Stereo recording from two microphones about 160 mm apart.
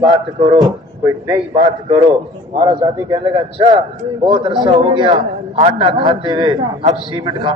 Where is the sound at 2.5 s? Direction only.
30° right (ahead or behind).